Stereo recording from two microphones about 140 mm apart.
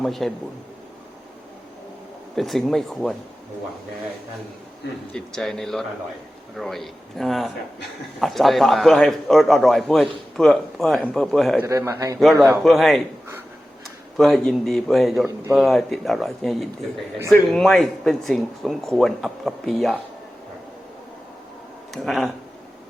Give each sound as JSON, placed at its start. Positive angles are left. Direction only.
{"t": 0.0, "sound": "a man's voice", "side_deg": 0}
{"t": 2.3, "sound": "a man's voice", "side_deg": 0}
{"t": 5.1, "sound": "a man's voice", "side_deg": 5}
{"t": 11.6, "sound": "a man's voice", "side_deg": -20}
{"t": 12.5, "sound": "a man's voice", "side_deg": 0}
{"t": 14.2, "sound": "a man's voice", "side_deg": 5}
{"t": 21.9, "sound": "a man's voice", "side_deg": 0}